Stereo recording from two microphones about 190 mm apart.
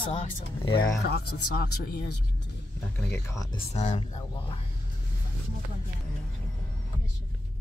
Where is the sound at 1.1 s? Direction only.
55° left (ahead or behind).